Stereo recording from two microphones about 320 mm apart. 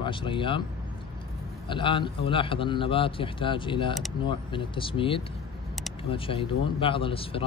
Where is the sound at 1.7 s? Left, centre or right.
Centre.